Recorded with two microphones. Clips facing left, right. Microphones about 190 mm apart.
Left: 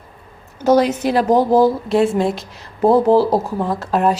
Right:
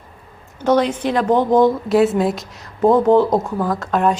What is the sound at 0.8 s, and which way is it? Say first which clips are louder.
Speech: left 2 dB; 5° left (ahead or behind).